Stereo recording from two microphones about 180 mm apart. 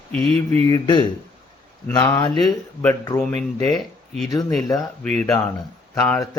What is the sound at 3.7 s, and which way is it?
Speech, centre (ahead or behind).